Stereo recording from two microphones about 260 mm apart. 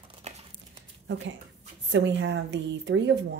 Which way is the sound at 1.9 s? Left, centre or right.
Right.